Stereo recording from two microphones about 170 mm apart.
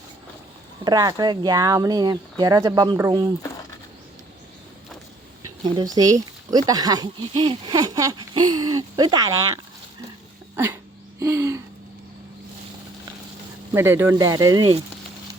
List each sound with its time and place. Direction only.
0.9 s speech: 25° right (ahead or behind)
5.7 s speech: 20° right (ahead or behind)
10.5 s a sound: 15° right (ahead or behind)
13.7 s speech: 15° right (ahead or behind)